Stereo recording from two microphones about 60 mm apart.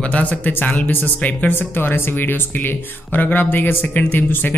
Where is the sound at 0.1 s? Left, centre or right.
Left.